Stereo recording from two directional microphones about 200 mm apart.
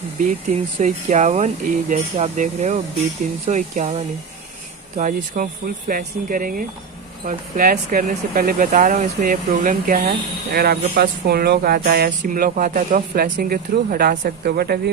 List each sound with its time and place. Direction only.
0.7 s speech: 35° right (ahead or behind)